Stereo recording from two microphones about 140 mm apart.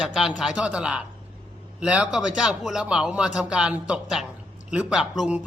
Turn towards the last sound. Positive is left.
turn(degrees=-5)  # may be behind; listen again after turning